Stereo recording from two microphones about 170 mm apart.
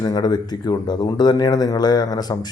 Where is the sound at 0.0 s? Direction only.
25° left (ahead or behind).